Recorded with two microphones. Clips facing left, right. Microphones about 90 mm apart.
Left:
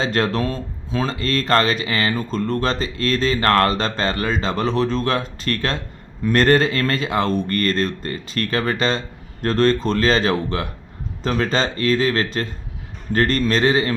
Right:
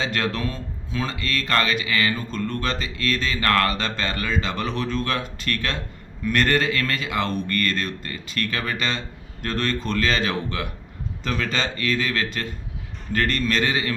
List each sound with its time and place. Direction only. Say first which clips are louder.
0.0 s a man's voice: left 5 dB; 35° left (ahead or behind)